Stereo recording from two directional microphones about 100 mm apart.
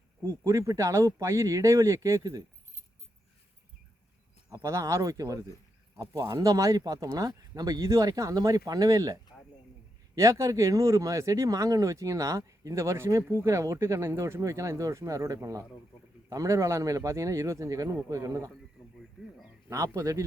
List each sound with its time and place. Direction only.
0.2 s speech: 30° right (ahead or behind)
4.6 s speech: 30° right (ahead or behind)
10.2 s speech: 30° right (ahead or behind)
19.7 s speech: 30° right (ahead or behind)